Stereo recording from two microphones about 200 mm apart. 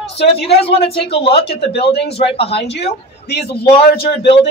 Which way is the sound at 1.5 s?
55° left (ahead or behind).